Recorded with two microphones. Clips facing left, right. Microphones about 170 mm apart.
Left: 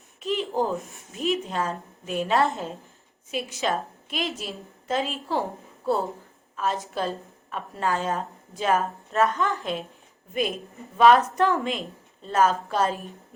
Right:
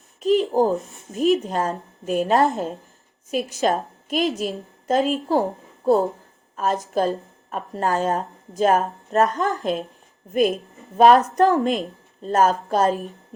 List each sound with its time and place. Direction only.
0.2 s a woman's voice: 40° right (ahead or behind)
10.9 s a woman's voice: 40° right (ahead or behind)